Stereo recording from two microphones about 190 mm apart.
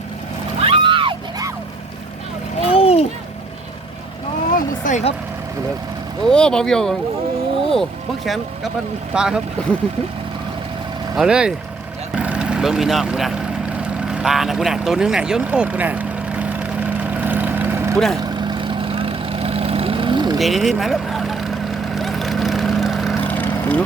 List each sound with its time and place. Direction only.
0.6 s a sound: 25° right (ahead or behind)
2.6 s a sound: 30° left (ahead or behind)
4.8 s speech: 40° left (ahead or behind)
6.3 s speech: 5° left (ahead or behind)
11.2 s speech: 5° right (ahead or behind)
12.1 s vehicle: 5° right (ahead or behind)
17.9 s speech: centre (ahead or behind)
18.3 s vehicle: 25° right (ahead or behind)
20.4 s speech: centre (ahead or behind)
21.9 s vehicle: centre (ahead or behind)